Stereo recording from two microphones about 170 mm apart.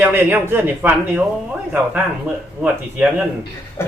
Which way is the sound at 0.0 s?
10° right (ahead or behind).